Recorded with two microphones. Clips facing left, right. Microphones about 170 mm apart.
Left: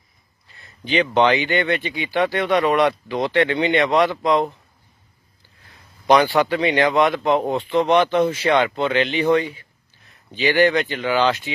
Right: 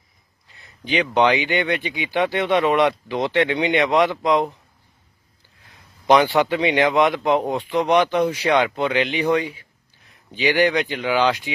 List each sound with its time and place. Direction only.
0.6 s a sound: 10° right (ahead or behind)
1.1 s speech: 10° right (ahead or behind)
6.1 s speech: 20° right (ahead or behind)